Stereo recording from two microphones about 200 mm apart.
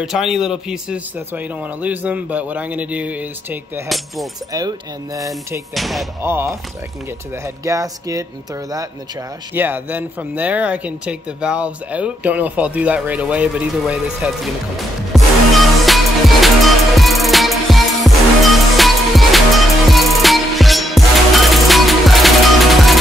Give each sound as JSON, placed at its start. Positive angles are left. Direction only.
{"t": 0.0, "sound": "speech", "side_deg": 0}
{"t": 4.5, "sound": "speech", "side_deg": -15}
{"t": 5.8, "sound": "speech", "side_deg": 0}
{"t": 6.2, "sound": "speech", "side_deg": -10}
{"t": 7.6, "sound": "speech", "side_deg": -15}
{"t": 9.5, "sound": "speech", "side_deg": -10}
{"t": 15.1, "sound": "music", "side_deg": 0}